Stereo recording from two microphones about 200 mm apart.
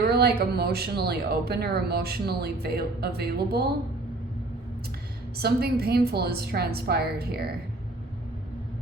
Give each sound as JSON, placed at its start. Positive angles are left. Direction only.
{"t": 0.0, "sound": "speech", "side_deg": -50}
{"t": 5.4, "sound": "speech", "side_deg": -50}